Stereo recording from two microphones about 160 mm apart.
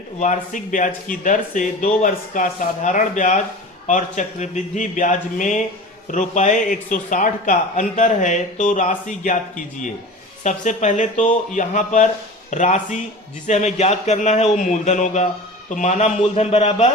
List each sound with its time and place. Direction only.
0.2 s a man's voice: 50° left (ahead or behind)